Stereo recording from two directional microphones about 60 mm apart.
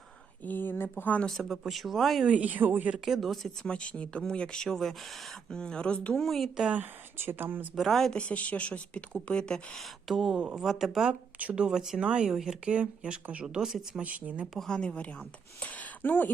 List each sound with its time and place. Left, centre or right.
0.4 s speech: left
1.3 s speech: centre
2.2 s speech: right
3.0 s speech: centre
3.7 s speech: centre
6.1 s speech: centre
6.7 s speech: right
7.8 s speech: centre
8.1 s speech: left
9.7 s speech: centre
11.1 s speech: right
14.0 s speech: right
14.7 s speech: centre